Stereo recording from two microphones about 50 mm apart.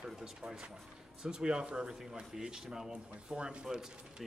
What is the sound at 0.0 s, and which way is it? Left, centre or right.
A man's voice, centre.